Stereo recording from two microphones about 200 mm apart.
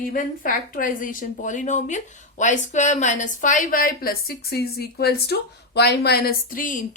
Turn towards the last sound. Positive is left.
turn(degrees=40)  # may be behind; listen again after turning